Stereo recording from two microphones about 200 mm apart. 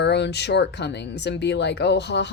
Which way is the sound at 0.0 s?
60° left (ahead or behind).